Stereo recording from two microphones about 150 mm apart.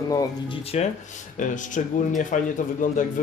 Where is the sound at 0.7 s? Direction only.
45° left (ahead or behind).